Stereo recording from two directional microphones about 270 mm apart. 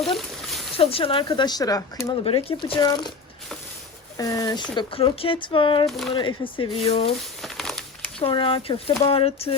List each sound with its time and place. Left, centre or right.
0.0 s a sound: centre
0.8 s speech: left
4.2 s speech: centre
7.4 s crumpling: centre
8.2 s speech: centre